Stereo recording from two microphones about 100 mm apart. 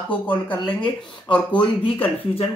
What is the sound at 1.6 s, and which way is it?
Speech, 65° left (ahead or behind).